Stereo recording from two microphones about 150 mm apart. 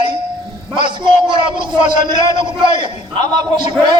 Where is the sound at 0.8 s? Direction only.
35° right (ahead or behind).